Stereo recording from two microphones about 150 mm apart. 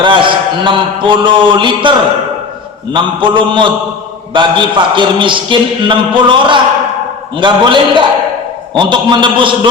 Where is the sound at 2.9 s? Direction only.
35° right (ahead or behind).